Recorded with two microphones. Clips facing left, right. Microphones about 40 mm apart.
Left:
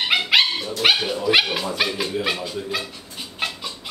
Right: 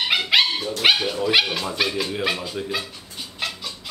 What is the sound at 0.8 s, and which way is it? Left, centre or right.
Dog, centre.